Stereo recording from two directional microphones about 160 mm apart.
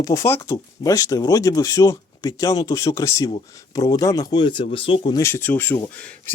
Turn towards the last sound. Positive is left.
turn(degrees=10)  # may be behind; listen again after turning